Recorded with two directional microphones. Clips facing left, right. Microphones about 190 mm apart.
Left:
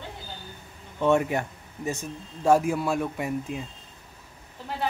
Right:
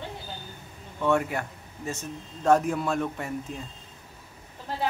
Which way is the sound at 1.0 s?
20° left (ahead or behind).